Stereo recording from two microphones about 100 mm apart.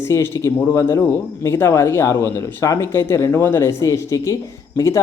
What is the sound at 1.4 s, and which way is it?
Speech, 30° left (ahead or behind).